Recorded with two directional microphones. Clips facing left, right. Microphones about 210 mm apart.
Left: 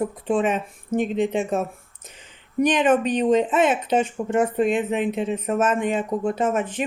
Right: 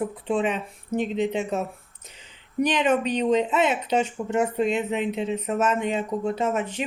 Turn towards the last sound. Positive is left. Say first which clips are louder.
# left 2 dB
turn(degrees=50)  # may be behind; listen again after turning